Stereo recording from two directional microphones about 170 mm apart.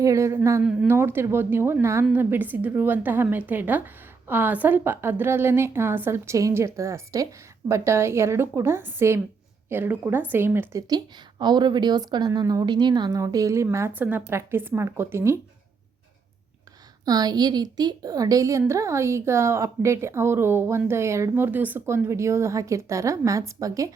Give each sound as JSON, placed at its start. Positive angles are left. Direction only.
{"t": 0.0, "sound": "a woman's voice", "side_deg": -20}
{"t": 0.6, "sound": "a woman's voice", "side_deg": -5}
{"t": 17.1, "sound": "a woman's voice", "side_deg": -25}